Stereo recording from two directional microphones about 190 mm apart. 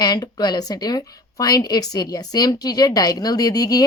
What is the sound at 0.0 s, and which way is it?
Speech, 20° left (ahead or behind).